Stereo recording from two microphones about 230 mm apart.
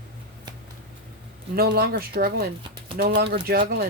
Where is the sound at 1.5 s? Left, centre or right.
Right.